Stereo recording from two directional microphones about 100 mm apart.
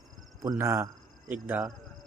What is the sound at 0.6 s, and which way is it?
Speech, 30° right (ahead or behind).